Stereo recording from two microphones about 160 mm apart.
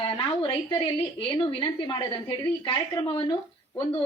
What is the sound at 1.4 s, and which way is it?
A woman's voice, 30° left (ahead or behind).